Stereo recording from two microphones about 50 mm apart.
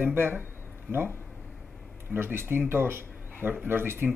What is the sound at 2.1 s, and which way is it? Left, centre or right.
Speech, right.